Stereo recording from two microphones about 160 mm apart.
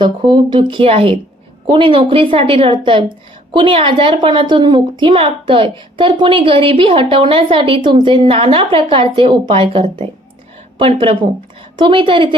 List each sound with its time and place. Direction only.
0.0 s a woman's voice: 30° right (ahead or behind)